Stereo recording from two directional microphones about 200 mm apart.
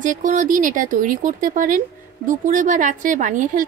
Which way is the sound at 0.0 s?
40° right (ahead or behind).